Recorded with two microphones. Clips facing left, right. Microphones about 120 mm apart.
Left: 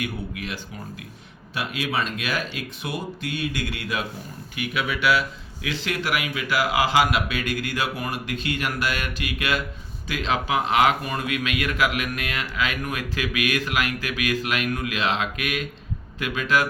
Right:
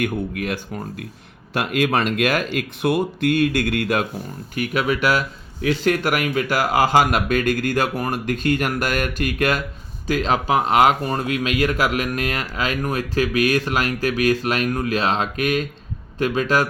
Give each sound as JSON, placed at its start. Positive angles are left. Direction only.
{"t": 0.0, "sound": "speech", "side_deg": -50}